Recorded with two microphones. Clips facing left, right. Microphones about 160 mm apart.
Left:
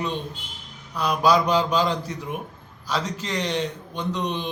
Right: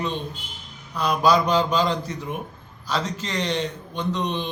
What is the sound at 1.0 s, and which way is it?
A man's voice, 10° left (ahead or behind).